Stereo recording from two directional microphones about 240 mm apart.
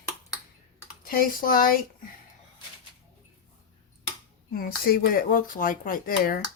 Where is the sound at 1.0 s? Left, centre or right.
Left.